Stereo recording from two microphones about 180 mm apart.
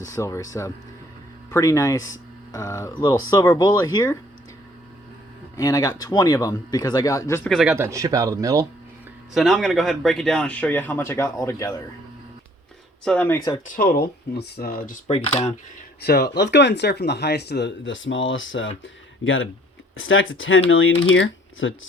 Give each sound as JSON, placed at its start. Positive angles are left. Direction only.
{"t": 0.0, "sound": "speech", "side_deg": 15}
{"t": 5.5, "sound": "speech", "side_deg": 20}
{"t": 7.5, "sound": "speech", "side_deg": -5}
{"t": 7.9, "sound": "speech", "side_deg": -15}
{"t": 9.3, "sound": "speech", "side_deg": 0}
{"t": 13.1, "sound": "speech", "side_deg": 10}
{"t": 13.7, "sound": "speech", "side_deg": 55}
{"t": 15.0, "sound": "speech", "side_deg": 35}
{"t": 16.0, "sound": "speech", "side_deg": 60}
{"t": 16.4, "sound": "speech", "side_deg": 75}